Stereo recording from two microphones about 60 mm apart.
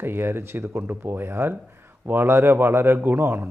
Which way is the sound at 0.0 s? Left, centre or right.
Right.